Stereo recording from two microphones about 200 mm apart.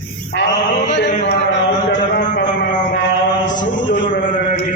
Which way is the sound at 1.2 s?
60° left (ahead or behind).